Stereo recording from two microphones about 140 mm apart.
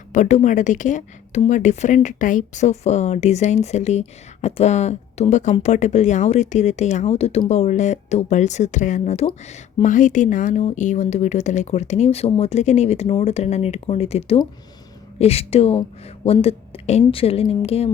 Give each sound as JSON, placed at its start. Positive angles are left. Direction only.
{"t": 0.1, "sound": "speech", "side_deg": 60}
{"t": 9.2, "sound": "speech", "side_deg": 40}
{"t": 9.8, "sound": "speech", "side_deg": 65}